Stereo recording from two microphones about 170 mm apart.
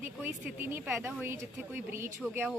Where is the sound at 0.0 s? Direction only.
10° right (ahead or behind).